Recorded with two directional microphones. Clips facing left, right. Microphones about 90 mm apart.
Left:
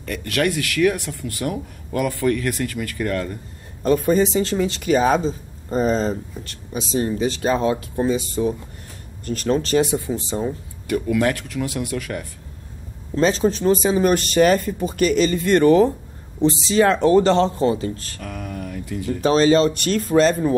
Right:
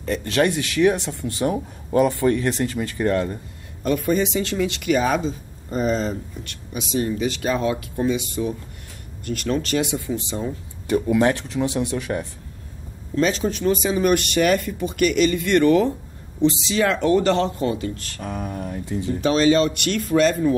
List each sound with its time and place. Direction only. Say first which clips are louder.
0.0 s speech: right 2 dB; 25° right (ahead or behind)
3.8 s speech: left 3 dB; 35° left (ahead or behind)
10.9 s speech: right 1 dB; 25° right (ahead or behind)
13.1 s speech: left 3 dB; 35° left (ahead or behind)
18.2 s speech: right 3 dB; 25° right (ahead or behind)
19.2 s speech: left 2 dB; 35° left (ahead or behind)